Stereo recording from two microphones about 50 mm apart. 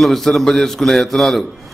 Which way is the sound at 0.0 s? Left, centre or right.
Centre.